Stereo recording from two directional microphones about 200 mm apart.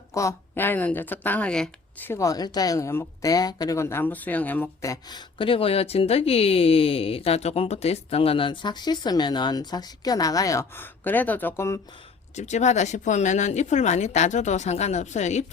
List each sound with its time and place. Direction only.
0.1 s speech: 15° left (ahead or behind)
12.4 s speech: 35° left (ahead or behind)